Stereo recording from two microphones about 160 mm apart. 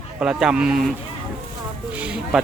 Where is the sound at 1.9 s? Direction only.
10° right (ahead or behind).